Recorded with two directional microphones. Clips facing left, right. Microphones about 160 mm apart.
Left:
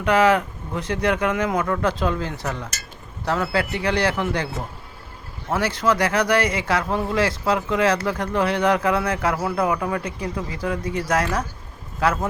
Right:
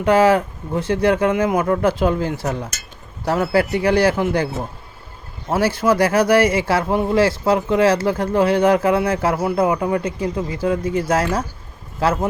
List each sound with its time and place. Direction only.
0.0 s speech: 30° right (ahead or behind)
5.5 s speech: 30° right (ahead or behind)